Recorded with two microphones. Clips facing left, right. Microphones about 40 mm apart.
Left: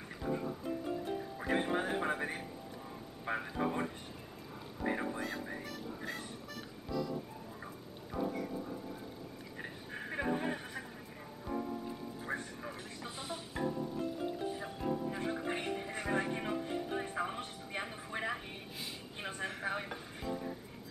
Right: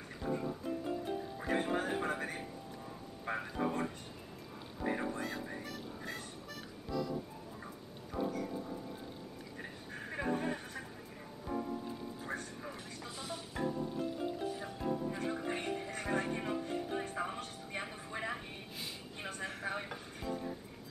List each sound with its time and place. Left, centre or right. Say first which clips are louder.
0.2 s music: even; centre
3.3 s speech: left 1 dB; centre
4.7 s music: even; centre
9.6 s a sound: left 3 dB; centre
12.3 s music: left 3 dB; left; by 20.5 s centre